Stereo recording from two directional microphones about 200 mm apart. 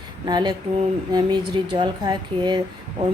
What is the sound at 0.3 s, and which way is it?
Speech, 20° right (ahead or behind).